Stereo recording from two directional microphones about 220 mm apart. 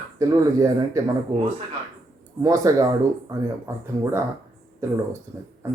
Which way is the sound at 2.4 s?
15° right (ahead or behind).